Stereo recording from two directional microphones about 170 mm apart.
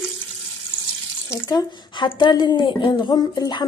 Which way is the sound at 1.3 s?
20° left (ahead or behind).